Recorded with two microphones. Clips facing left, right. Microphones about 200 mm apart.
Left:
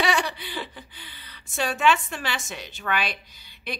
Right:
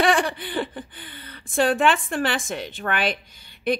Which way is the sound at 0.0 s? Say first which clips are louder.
Right 5 dB; 50° right (ahead or behind).